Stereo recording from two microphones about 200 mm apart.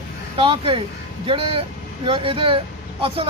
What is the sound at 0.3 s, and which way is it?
Speech, 25° right (ahead or behind).